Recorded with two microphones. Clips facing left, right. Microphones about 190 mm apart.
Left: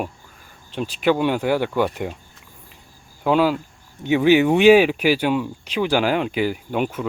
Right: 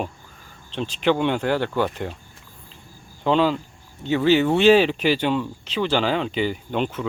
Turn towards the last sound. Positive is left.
turn(degrees=10)  # may be behind; listen again after turning